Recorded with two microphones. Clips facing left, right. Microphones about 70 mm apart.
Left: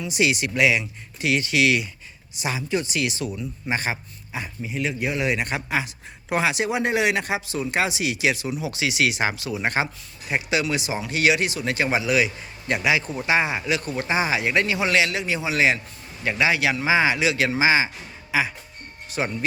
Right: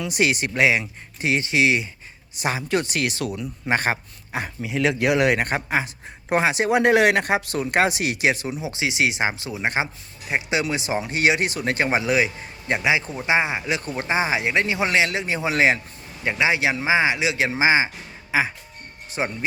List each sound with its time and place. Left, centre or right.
0.0 s speech: right
2.4 s a man's voice: right
2.6 s a man's voice: right
3.2 s a man's voice: right
4.6 s a man's voice: right
6.7 s speech: right
10.6 s speech: right
16.2 s speech: right